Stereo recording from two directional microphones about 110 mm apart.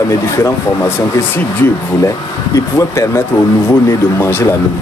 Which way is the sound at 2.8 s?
30° left (ahead or behind).